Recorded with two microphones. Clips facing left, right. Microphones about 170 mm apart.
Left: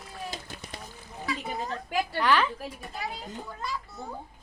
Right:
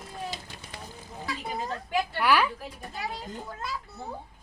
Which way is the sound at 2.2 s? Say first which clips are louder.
Even; 10° right (ahead or behind).